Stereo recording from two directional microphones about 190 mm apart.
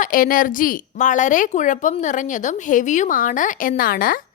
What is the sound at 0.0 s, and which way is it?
A woman's voice, 45° left (ahead or behind).